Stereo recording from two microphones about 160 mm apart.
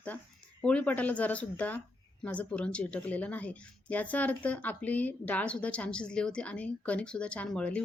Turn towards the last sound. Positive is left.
turn(degrees=5)  # may be behind; listen again after turning